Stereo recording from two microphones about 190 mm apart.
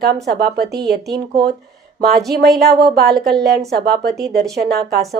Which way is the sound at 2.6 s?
55° right (ahead or behind).